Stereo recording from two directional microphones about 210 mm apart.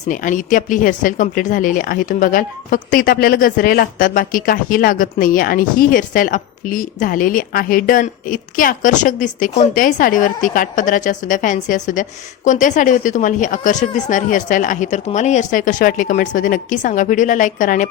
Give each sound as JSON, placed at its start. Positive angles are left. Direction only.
{"t": 0.0, "sound": "speech", "side_deg": 40}